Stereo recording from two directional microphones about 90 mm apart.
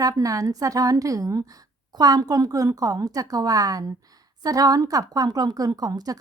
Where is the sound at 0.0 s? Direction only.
40° right (ahead or behind).